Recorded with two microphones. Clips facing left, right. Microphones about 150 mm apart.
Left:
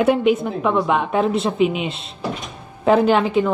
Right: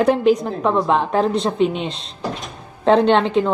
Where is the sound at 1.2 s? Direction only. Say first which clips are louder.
Even; 5° left (ahead or behind).